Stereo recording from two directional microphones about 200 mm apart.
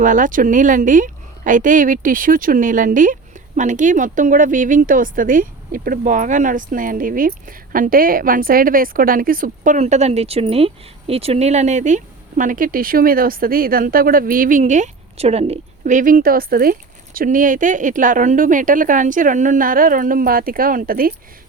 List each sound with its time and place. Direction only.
0.0 s a woman's voice: 40° right (ahead or behind)